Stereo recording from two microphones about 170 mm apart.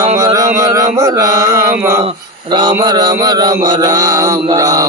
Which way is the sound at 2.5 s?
25° right (ahead or behind).